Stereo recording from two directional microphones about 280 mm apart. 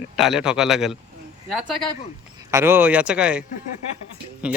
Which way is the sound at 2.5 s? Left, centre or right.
Centre.